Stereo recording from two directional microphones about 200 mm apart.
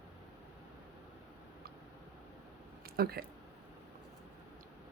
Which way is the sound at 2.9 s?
50° right (ahead or behind).